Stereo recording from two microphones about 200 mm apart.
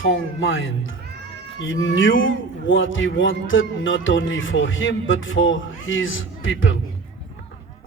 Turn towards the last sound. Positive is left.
turn(degrees=75)  # may be behind; listen again after turning